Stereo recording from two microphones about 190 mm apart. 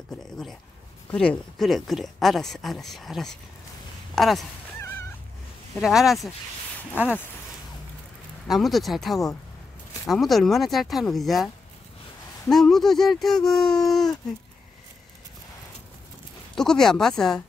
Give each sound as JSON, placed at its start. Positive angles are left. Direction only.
{"t": 1.1, "sound": "speech", "side_deg": 5}
{"t": 5.8, "sound": "speech", "side_deg": 0}
{"t": 8.5, "sound": "speech", "side_deg": 0}
{"t": 16.5, "sound": "speech", "side_deg": 5}